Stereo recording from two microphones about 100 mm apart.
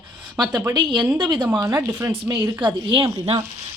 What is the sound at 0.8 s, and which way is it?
Speech, 45° right (ahead or behind).